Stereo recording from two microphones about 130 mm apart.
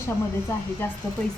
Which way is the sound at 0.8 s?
20° left (ahead or behind).